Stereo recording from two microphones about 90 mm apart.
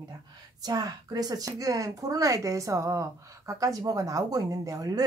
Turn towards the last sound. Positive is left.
turn(degrees=-40)  # may be behind; listen again after turning